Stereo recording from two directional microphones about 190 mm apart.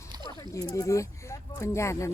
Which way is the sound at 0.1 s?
20° right (ahead or behind).